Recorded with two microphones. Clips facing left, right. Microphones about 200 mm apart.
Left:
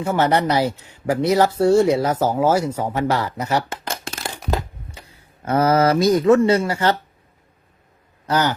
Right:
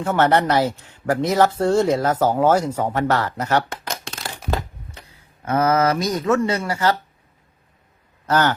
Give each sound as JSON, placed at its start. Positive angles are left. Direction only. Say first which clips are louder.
{"t": 0.0, "sound": "speech", "louder": "right 1 dB", "side_deg": 10}
{"t": 5.5, "sound": "speech", "louder": "left 2 dB", "side_deg": 30}
{"t": 8.3, "sound": "speech", "louder": "right 1 dB", "side_deg": 10}